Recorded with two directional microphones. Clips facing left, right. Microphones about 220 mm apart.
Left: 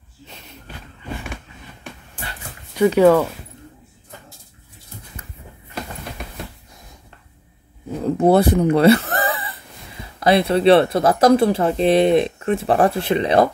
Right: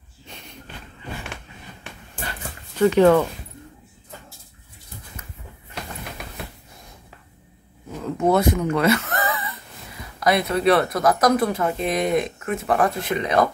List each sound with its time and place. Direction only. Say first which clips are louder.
3.0 s speech: left 2 dB; 5° left (ahead or behind)
7.9 s a sound: left 5 dB; 30° left (ahead or behind)
10.2 s speech: left 5 dB; 30° left (ahead or behind)